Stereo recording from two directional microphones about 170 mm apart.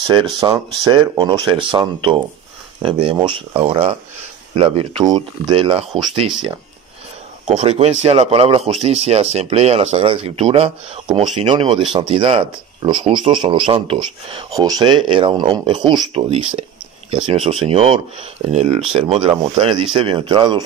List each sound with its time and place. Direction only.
0.0 s speech: 30° right (ahead or behind)
7.4 s speech: 40° right (ahead or behind)